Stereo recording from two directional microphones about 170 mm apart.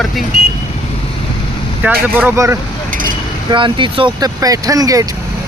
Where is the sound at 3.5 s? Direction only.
30° right (ahead or behind).